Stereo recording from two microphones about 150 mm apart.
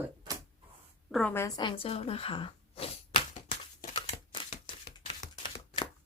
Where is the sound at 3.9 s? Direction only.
35° left (ahead or behind).